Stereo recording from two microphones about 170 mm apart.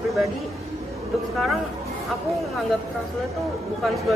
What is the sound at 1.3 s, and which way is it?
Speech, centre (ahead or behind).